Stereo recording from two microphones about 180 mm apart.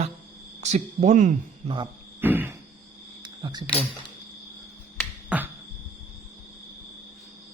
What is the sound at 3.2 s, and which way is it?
Speech, 25° right (ahead or behind).